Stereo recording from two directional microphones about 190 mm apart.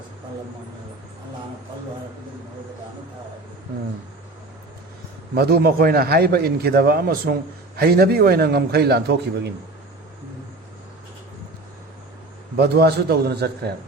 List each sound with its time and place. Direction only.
5.3 s a man's voice: 55° right (ahead or behind)
12.5 s a man's voice: 60° right (ahead or behind)